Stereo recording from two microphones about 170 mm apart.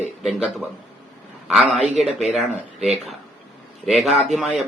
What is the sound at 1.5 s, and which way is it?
Speech, 5° right (ahead or behind).